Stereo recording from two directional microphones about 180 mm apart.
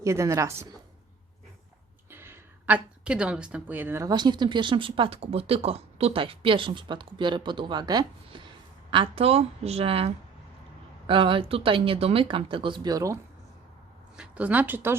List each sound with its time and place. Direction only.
0.0 s speech: 15° right (ahead or behind)
2.0 s a woman's voice: 15° right (ahead or behind)
14.2 s speech: 10° right (ahead or behind)